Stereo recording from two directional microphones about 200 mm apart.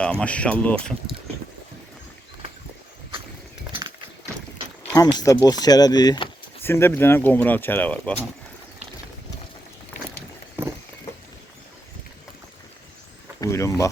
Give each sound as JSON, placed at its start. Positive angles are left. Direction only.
{"t": 0.0, "sound": "speech", "side_deg": 5}
{"t": 3.7, "sound": "horse", "side_deg": -20}
{"t": 5.1, "sound": "speech", "side_deg": 15}
{"t": 13.4, "sound": "speech", "side_deg": 15}